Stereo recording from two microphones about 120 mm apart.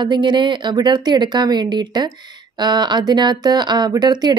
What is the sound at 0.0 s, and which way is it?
A woman's voice, 40° right (ahead or behind).